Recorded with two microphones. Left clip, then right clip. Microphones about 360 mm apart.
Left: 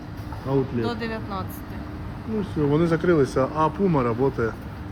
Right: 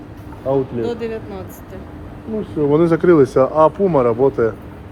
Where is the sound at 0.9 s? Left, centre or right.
Centre.